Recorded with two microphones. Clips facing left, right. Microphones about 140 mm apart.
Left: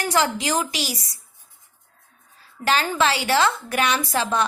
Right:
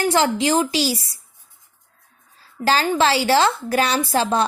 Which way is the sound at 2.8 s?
25° right (ahead or behind).